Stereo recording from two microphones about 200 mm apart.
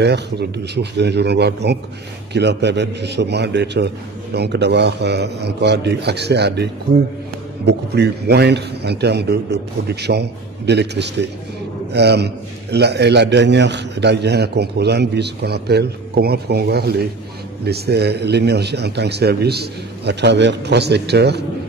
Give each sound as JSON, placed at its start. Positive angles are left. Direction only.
{"t": 0.0, "sound": "a man's voice", "side_deg": -55}